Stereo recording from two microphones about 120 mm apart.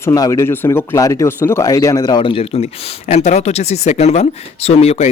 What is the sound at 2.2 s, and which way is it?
Speech, 50° left (ahead or behind).